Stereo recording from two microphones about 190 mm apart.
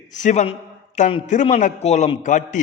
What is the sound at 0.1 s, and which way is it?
A man's voice, 40° left (ahead or behind).